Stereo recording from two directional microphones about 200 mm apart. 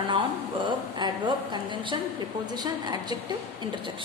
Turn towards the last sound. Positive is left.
turn(degrees=-20)  # may be behind; listen again after turning